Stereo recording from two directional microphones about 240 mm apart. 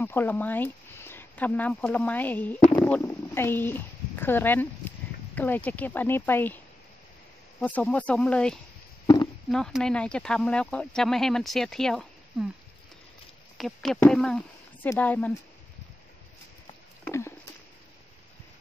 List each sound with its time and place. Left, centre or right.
0.0 s speech: centre
7.6 s speech: centre
9.0 s a sound: centre
9.5 s speech: centre
13.6 s speech: centre
17.0 s a sound: centre